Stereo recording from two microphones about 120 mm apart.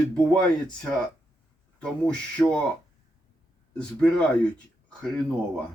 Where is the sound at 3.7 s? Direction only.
5° left (ahead or behind).